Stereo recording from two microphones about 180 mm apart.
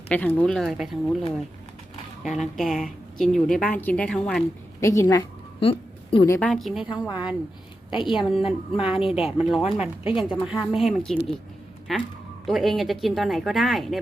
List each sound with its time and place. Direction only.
0.1 s speech: 10° left (ahead or behind)
2.2 s a woman's voice: centre (ahead or behind)
4.8 s a woman's voice: 15° left (ahead or behind)
5.5 s a sound: 30° left (ahead or behind)
6.2 s a woman's voice: 15° left (ahead or behind)
6.5 s speech: centre (ahead or behind)